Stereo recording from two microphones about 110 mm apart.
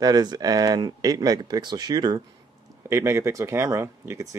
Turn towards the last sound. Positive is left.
turn(degrees=-30)  # may be behind; listen again after turning